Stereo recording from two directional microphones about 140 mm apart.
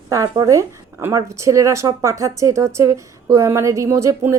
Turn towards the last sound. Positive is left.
turn(degrees=-20)  # may be behind; listen again after turning